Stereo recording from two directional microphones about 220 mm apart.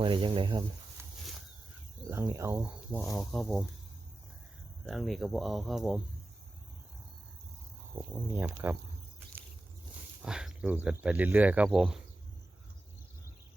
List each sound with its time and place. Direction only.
0.0 s speech: 25° right (ahead or behind)
2.0 s speech: 15° right (ahead or behind)
2.9 s speech: 5° left (ahead or behind)
4.9 s speech: centre (ahead or behind)
7.9 s speech: 10° right (ahead or behind)
10.2 s speech: 5° right (ahead or behind)